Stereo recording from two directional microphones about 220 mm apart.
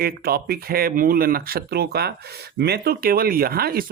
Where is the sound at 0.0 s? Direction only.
45° right (ahead or behind).